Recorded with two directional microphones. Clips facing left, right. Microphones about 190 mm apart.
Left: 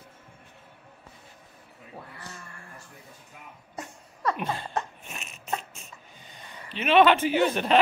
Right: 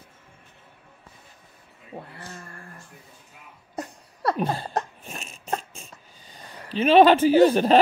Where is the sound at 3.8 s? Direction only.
35° right (ahead or behind).